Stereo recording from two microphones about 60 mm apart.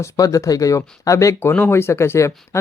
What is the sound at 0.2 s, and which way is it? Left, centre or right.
Speech, left.